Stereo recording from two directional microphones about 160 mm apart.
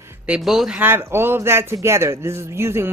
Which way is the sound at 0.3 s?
Centre (ahead or behind).